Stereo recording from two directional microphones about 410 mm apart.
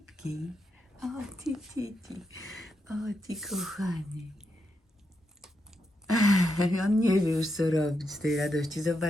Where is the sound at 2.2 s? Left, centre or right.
Left.